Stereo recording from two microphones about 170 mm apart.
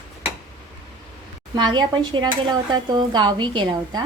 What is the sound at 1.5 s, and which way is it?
Speech, 25° right (ahead or behind).